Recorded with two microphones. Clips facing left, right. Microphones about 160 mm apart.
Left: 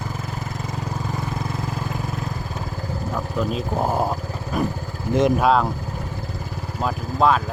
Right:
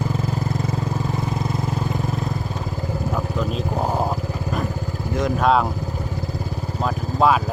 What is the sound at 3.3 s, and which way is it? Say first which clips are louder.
Vehicle: even; 5° left (ahead or behind).